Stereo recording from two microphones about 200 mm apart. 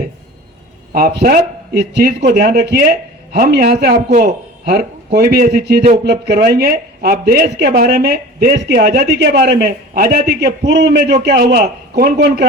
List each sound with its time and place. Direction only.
0.9 s a woman's voice: 50° right (ahead or behind)